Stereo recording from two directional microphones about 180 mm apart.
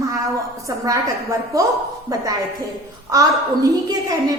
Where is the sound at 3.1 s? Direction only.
20° right (ahead or behind).